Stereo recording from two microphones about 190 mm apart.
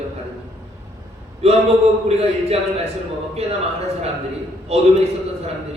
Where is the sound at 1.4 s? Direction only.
35° right (ahead or behind).